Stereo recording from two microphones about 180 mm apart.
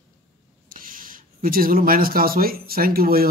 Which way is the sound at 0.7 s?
50° right (ahead or behind).